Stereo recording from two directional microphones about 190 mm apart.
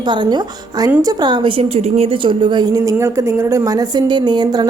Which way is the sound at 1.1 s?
25° right (ahead or behind).